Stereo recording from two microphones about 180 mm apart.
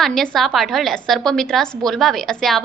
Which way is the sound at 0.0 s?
Centre (ahead or behind).